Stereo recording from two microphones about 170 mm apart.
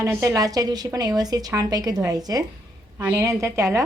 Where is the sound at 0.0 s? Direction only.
20° right (ahead or behind).